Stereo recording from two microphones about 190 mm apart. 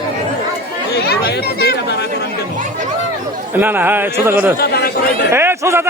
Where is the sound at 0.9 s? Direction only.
60° left (ahead or behind).